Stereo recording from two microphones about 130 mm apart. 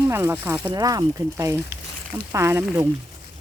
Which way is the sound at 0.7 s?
30° right (ahead or behind).